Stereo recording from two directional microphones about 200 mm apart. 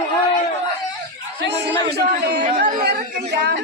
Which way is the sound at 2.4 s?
35° right (ahead or behind).